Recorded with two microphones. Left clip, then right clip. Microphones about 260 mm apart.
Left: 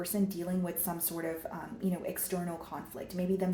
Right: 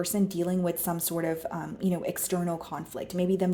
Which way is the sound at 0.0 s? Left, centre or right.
Right.